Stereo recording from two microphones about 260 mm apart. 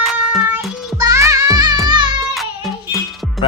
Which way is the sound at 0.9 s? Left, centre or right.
Centre.